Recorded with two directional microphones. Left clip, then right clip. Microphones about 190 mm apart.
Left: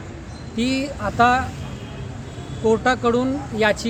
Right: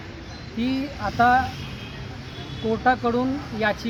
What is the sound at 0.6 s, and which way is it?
Speech, 25° left (ahead or behind).